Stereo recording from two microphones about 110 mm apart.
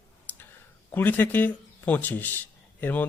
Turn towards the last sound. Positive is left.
turn(degrees=15)  # may be behind; listen again after turning